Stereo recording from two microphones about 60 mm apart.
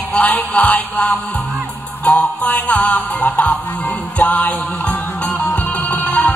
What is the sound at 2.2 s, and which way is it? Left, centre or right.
Music, left.